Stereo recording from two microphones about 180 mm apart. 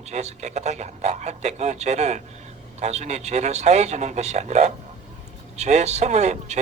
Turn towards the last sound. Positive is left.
turn(degrees=-40)  # may be behind; listen again after turning